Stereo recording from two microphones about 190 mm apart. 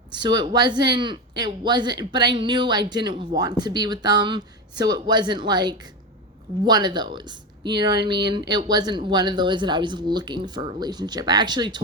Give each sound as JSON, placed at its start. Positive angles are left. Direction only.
{"t": 0.1, "sound": "speech", "side_deg": -20}